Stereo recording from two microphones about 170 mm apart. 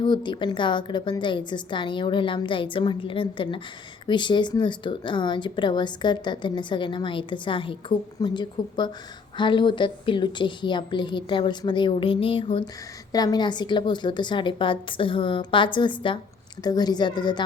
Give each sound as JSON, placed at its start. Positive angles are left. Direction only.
{"t": 0.0, "sound": "speech", "side_deg": 25}